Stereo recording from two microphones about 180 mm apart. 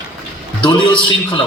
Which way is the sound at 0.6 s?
25° left (ahead or behind).